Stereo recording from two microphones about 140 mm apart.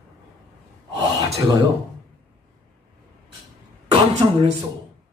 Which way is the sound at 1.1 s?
25° right (ahead or behind).